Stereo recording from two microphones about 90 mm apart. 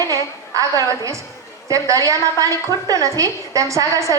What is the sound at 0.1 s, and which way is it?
A woman's voice, 40° right (ahead or behind).